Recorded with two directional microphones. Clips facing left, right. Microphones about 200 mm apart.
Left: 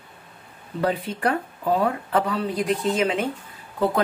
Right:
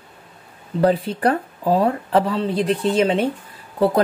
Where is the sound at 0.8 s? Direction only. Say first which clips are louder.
Right 6 dB; 35° right (ahead or behind).